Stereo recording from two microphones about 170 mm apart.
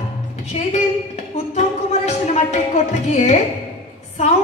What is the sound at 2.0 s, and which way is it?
A woman's voice, 40° left (ahead or behind).